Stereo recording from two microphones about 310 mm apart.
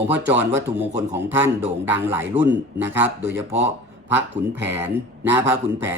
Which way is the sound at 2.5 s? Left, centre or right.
Right.